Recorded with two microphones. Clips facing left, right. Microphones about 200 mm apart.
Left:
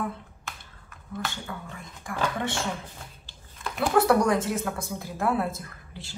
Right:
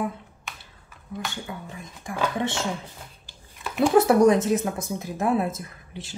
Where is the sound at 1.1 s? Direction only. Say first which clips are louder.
Right 1 dB; 15° right (ahead or behind).